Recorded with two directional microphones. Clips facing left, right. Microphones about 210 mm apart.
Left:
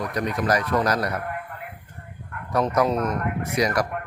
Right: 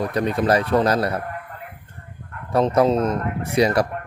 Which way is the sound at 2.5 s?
30° right (ahead or behind).